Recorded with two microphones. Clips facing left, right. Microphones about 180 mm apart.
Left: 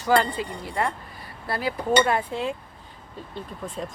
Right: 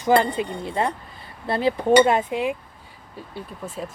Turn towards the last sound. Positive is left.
turn(degrees=-5)  # may be behind; listen again after turning